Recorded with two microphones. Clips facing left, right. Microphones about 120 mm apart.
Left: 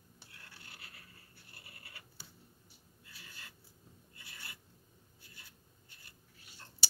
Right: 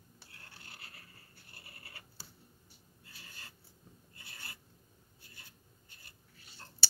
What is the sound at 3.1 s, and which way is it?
Writing, 35° right (ahead or behind).